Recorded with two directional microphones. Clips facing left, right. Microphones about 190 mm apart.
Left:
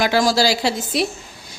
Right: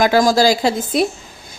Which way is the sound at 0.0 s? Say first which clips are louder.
Right 4 dB; 45° right (ahead or behind).